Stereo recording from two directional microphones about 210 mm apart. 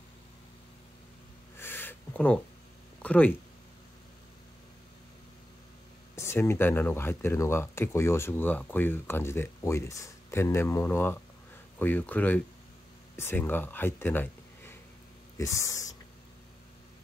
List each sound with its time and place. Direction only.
1.6 s a sound: 10° left (ahead or behind)
3.0 s speech: 5° left (ahead or behind)
6.1 s speech: 10° left (ahead or behind)